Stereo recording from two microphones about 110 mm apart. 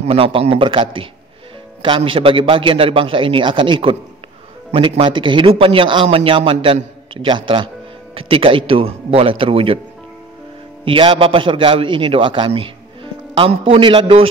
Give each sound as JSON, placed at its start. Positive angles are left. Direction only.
{"t": 0.0, "sound": "a man's voice", "side_deg": -60}
{"t": 10.9, "sound": "a man's voice", "side_deg": -55}